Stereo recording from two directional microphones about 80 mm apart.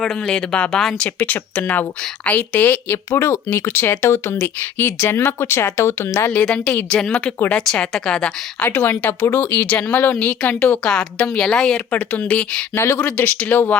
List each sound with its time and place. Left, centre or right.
0.0 s speech: centre
1.2 s a woman's voice: left
3.1 s speech: left
6.4 s speech: centre
8.7 s a woman's voice: left
10.8 s a woman's voice: centre
11.9 s speech: centre
12.7 s a woman's voice: left